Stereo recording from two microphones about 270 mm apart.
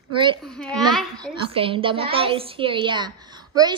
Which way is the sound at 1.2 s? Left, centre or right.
Centre.